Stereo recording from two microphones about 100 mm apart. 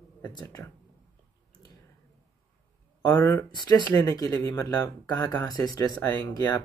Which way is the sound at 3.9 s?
35° left (ahead or behind).